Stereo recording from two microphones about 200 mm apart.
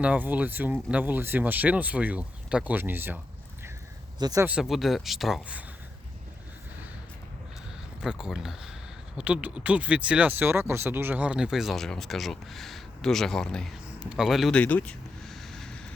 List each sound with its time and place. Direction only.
0.0 s speech: 10° right (ahead or behind)
4.2 s speech: 20° right (ahead or behind)
4.7 s speech: centre (ahead or behind)
8.0 s speech: 5° right (ahead or behind)